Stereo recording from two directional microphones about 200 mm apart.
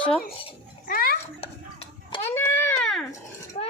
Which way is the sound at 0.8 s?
45° left (ahead or behind).